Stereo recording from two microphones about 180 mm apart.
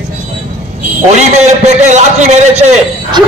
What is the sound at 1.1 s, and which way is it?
A man's voice, 40° right (ahead or behind).